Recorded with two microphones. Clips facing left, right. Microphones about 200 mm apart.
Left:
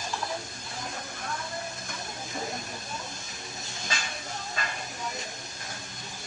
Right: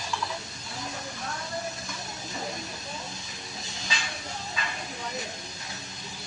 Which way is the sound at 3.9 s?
50° left (ahead or behind).